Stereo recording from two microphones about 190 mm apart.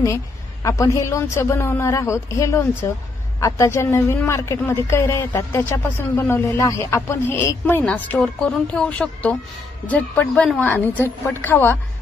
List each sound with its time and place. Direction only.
0.7 s a woman's voice: 15° left (ahead or behind)